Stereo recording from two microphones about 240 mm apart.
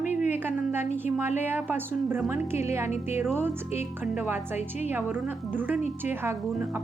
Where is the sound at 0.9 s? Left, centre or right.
Centre.